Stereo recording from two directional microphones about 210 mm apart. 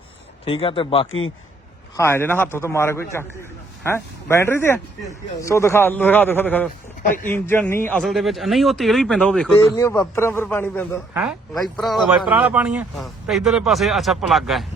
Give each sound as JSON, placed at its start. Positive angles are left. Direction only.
{"t": 0.4, "sound": "speech", "side_deg": 25}
{"t": 2.0, "sound": "speech", "side_deg": 10}
{"t": 7.0, "sound": "speech", "side_deg": 40}
{"t": 7.3, "sound": "speech", "side_deg": 10}
{"t": 9.7, "sound": "speech", "side_deg": 15}
{"t": 11.1, "sound": "speech", "side_deg": -5}